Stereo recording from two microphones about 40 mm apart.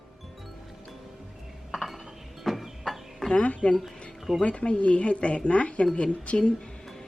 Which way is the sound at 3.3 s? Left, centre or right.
Left.